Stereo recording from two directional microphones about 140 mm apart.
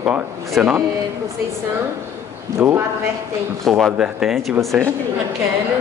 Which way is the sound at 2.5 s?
15° right (ahead or behind).